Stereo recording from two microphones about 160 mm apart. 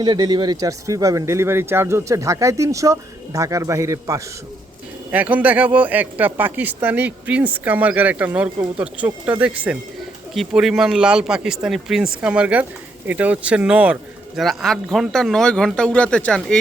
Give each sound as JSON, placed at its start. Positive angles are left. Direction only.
{"t": 0.0, "sound": "speech", "side_deg": -25}